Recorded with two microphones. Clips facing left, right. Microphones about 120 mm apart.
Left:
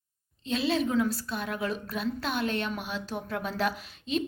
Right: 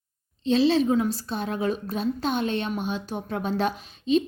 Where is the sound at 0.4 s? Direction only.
30° right (ahead or behind).